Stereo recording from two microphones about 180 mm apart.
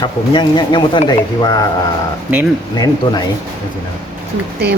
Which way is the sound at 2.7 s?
20° left (ahead or behind).